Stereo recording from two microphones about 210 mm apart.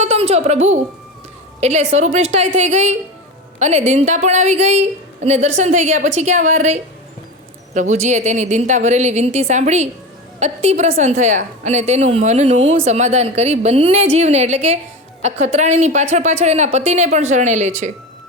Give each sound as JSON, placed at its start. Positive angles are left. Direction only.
{"t": 0.0, "sound": "a child's voice", "side_deg": -30}